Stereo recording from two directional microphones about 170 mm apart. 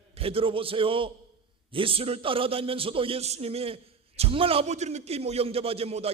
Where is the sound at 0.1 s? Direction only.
35° right (ahead or behind).